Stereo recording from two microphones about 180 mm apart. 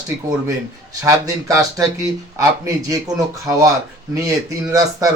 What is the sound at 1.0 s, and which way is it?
A man's voice, 20° right (ahead or behind).